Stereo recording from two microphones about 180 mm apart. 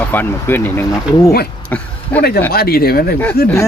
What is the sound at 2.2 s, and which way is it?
Speech, 60° left (ahead or behind).